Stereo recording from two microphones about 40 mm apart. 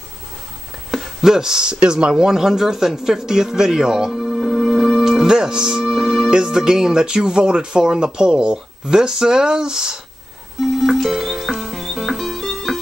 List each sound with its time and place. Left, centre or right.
0.9 s speech: centre
2.2 s speech: centre
4.4 s music: centre
5.0 s music: centre
5.3 s speech: centre
10.6 s music: centre